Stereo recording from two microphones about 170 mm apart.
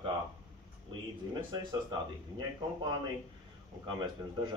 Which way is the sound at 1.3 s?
25° right (ahead or behind).